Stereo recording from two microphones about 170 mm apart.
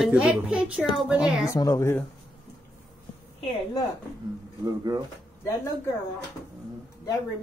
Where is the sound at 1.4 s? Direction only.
20° left (ahead or behind).